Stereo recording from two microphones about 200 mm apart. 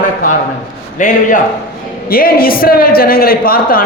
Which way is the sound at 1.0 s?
40° left (ahead or behind).